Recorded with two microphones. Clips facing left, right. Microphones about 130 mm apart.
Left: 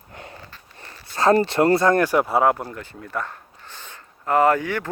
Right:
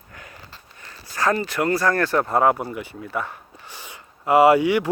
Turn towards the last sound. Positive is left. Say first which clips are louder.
# right 4 dB
turn(degrees=-15)  # may be behind; listen again after turning